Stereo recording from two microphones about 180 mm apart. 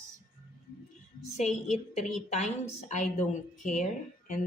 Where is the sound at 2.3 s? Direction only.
40° left (ahead or behind).